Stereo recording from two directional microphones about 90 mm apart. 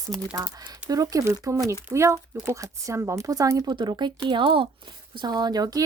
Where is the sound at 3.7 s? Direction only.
55° right (ahead or behind).